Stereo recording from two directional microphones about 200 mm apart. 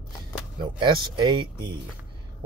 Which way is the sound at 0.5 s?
25° right (ahead or behind).